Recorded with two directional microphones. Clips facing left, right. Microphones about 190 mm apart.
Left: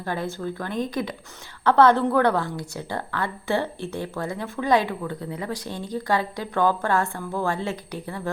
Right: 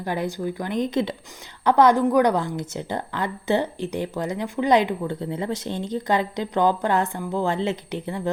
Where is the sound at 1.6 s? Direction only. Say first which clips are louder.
Right 1 dB; 15° right (ahead or behind).